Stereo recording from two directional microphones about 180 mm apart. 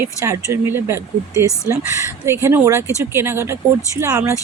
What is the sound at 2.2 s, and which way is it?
Speech, 15° right (ahead or behind).